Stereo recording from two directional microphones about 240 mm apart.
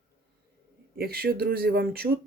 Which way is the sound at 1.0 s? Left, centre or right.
Right.